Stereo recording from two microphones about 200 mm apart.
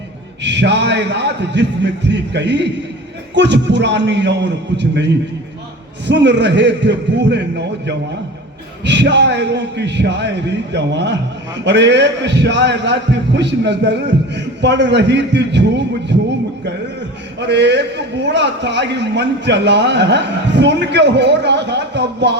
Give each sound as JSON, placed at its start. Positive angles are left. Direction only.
{"t": 0.4, "sound": "a man's voice", "side_deg": -60}
{"t": 8.8, "sound": "a man's voice", "side_deg": -60}
{"t": 17.4, "sound": "a man's voice", "side_deg": -60}